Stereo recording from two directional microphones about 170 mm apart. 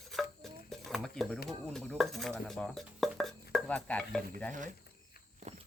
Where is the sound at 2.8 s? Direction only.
Centre (ahead or behind).